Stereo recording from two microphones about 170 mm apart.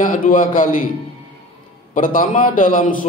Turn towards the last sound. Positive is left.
turn(degrees=50)  # may be behind; listen again after turning